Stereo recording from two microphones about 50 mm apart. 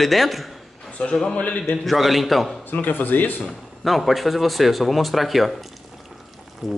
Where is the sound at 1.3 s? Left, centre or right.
Left.